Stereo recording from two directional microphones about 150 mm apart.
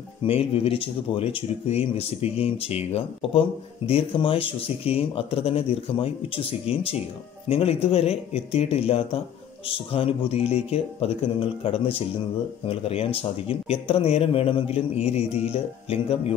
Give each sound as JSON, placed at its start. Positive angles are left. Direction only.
{"t": 0.2, "sound": "speech", "side_deg": 40}